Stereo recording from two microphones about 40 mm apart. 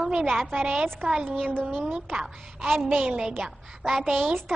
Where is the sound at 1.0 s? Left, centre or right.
Right.